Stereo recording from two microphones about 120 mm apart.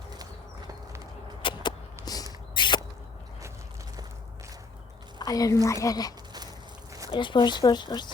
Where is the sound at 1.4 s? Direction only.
45° left (ahead or behind).